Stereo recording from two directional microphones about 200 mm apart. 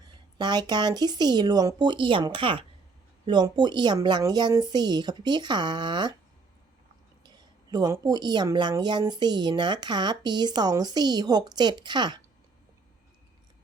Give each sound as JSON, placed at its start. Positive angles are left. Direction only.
{"t": 0.3, "sound": "speech", "side_deg": -20}
{"t": 7.3, "sound": "speech", "side_deg": -20}